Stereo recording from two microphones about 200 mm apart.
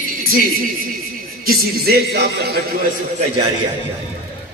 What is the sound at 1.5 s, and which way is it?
Speech, 50° right (ahead or behind).